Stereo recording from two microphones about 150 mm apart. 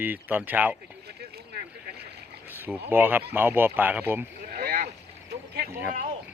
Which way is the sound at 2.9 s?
10° right (ahead or behind).